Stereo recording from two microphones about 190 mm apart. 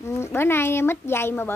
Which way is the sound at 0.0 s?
15° left (ahead or behind).